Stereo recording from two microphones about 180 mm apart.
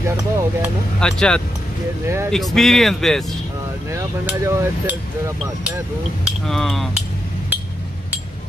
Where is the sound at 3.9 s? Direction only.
10° right (ahead or behind).